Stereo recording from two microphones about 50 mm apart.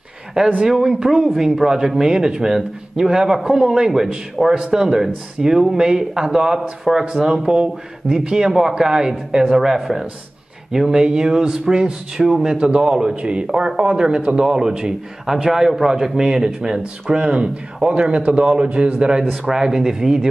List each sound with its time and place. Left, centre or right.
0.7 s a man's voice: centre